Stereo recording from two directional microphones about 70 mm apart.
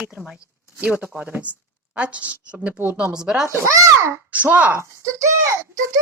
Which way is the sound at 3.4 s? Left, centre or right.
Right.